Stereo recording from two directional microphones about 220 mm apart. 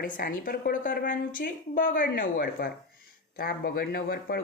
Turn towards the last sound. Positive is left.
turn(degrees=45)  # may be behind; listen again after turning